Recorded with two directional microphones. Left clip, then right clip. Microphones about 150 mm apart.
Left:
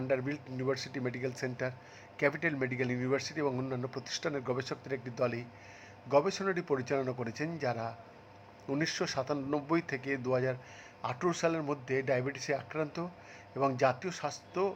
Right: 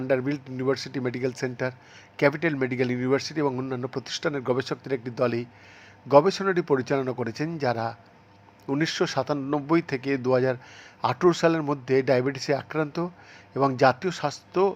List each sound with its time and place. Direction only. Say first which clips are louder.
0.1 s a man's voice: right 9 dB; 25° right (ahead or behind)